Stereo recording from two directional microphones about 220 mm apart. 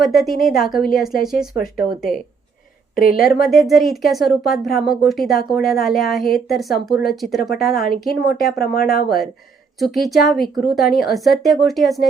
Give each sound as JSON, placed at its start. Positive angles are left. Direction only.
{"t": 0.0, "sound": "speech", "side_deg": 0}
{"t": 1.5, "sound": "speech", "side_deg": 40}
{"t": 2.9, "sound": "a woman's voice", "side_deg": 40}
{"t": 3.5, "sound": "speech", "side_deg": 0}
{"t": 7.9, "sound": "speech", "side_deg": 45}
{"t": 9.0, "sound": "speech", "side_deg": 0}